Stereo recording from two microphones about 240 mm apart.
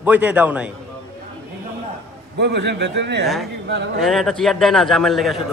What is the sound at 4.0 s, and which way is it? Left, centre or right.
A man's voice, centre.